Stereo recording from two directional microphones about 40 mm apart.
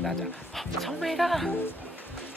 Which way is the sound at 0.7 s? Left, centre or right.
Centre.